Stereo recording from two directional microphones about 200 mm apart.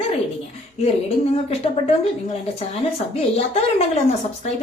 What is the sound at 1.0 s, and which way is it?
A woman's voice, 30° left (ahead or behind).